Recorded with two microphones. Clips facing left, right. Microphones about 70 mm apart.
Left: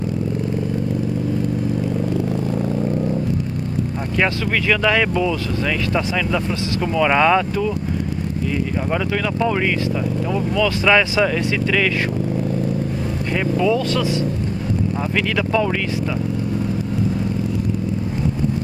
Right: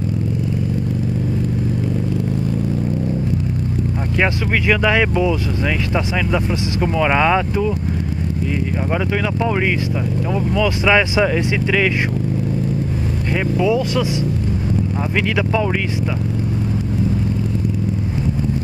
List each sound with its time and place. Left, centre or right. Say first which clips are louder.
4.2 s speech: right 1 dB; centre
10.3 s speech: right 1 dB; centre
13.6 s speech: right 1 dB; centre